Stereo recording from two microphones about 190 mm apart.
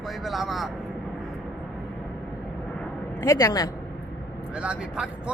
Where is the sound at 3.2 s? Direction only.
15° left (ahead or behind).